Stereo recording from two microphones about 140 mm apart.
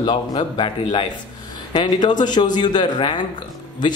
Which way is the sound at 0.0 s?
35° left (ahead or behind).